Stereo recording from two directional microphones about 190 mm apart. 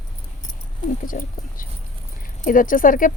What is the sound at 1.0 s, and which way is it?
A woman's voice, 45° left (ahead or behind).